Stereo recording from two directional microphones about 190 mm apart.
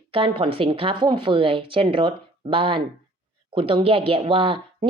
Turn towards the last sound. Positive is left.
turn(degrees=-30)  # may be behind; listen again after turning